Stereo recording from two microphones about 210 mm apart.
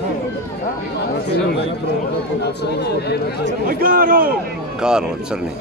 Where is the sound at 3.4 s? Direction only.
40° right (ahead or behind).